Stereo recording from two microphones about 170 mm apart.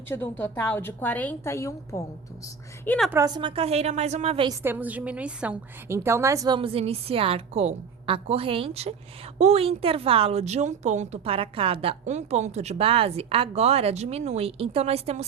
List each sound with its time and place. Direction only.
0.1 s a woman's voice: 10° left (ahead or behind)
3.1 s a woman's voice: 20° right (ahead or behind); by 4.4 s 40° right (ahead or behind)
4.4 s a woman's voice: 15° right (ahead or behind)
6.6 s a woman's voice: 35° right (ahead or behind)